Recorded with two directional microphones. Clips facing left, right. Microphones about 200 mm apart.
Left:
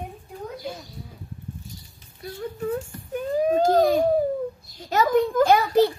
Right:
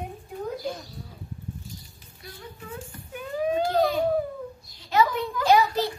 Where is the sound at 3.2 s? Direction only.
40° left (ahead or behind).